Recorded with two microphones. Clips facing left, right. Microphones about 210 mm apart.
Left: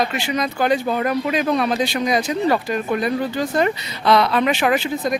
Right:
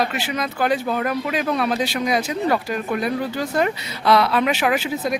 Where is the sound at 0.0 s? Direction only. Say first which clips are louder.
Left 2 dB; 5° right (ahead or behind).